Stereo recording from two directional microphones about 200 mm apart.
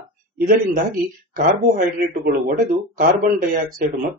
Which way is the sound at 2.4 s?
40° right (ahead or behind).